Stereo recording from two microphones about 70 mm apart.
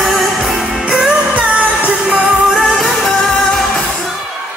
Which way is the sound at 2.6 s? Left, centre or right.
Centre.